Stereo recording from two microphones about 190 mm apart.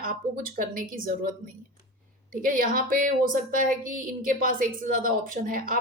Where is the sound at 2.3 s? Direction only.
50° right (ahead or behind).